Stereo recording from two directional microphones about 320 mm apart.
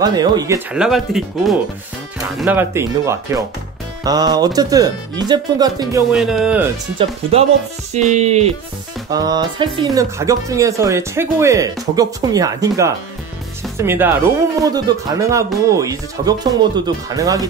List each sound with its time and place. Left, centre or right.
0.0 s speech: centre
7.0 s speech: centre
7.9 s music: right
9.1 s speech: centre